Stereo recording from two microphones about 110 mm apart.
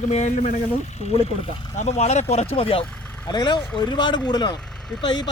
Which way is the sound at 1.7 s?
85° left.